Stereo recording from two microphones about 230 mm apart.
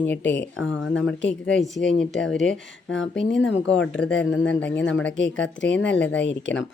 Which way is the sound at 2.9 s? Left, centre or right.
Left.